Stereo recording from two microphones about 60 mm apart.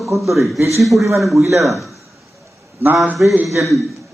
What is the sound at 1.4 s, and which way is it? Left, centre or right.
Speech, right.